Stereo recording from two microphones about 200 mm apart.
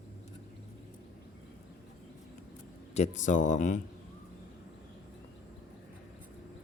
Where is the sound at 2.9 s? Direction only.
35° left (ahead or behind).